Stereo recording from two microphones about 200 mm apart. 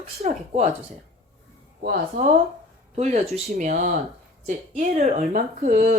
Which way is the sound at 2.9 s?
35° right (ahead or behind).